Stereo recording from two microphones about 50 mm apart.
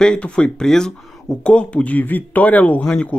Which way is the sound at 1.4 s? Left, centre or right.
Left.